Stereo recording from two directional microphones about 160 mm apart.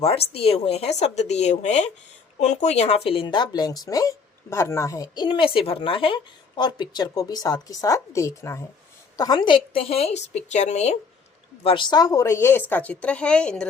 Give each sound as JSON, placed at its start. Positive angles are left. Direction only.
{"t": 0.3, "sound": "a woman's voice", "side_deg": 40}
{"t": 11.6, "sound": "a woman's voice", "side_deg": 30}